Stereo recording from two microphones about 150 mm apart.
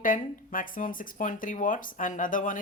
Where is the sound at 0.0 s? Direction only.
65° left (ahead or behind).